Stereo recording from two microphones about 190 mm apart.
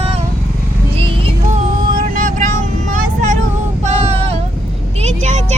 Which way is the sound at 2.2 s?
40° right (ahead or behind).